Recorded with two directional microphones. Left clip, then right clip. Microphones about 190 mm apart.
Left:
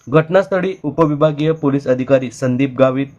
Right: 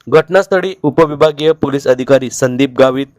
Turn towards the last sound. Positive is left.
turn(degrees=-40)  # may be behind; listen again after turning